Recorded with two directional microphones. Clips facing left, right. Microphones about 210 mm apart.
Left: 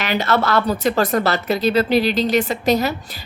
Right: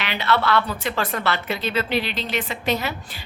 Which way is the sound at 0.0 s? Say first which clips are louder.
Left 4 dB; 45° left (ahead or behind).